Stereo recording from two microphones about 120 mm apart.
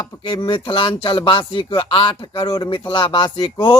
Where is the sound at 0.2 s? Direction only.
40° left (ahead or behind).